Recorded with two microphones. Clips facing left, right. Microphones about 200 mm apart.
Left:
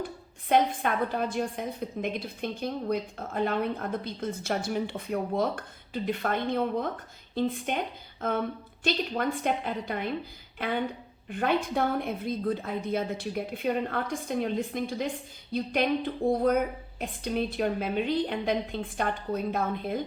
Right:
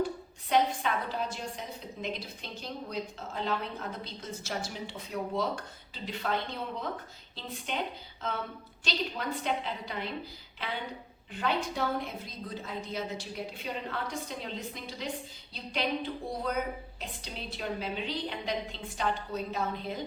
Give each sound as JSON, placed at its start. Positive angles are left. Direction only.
{"t": 0.4, "sound": "a woman's voice", "side_deg": 55}